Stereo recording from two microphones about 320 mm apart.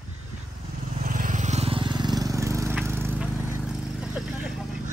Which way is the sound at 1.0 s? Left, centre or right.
Right.